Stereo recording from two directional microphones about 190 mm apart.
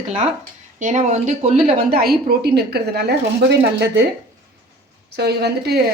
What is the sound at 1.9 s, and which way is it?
Speech, 55° right (ahead or behind).